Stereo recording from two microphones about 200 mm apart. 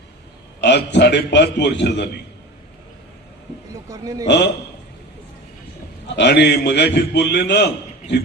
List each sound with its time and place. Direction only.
0.6 s a man's voice: 60° left (ahead or behind)
3.8 s a man's voice: 20° right (ahead or behind)
6.1 s a man's voice: 60° left (ahead or behind)